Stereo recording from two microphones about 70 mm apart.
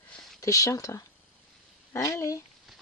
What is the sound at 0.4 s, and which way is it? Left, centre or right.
Speech, left.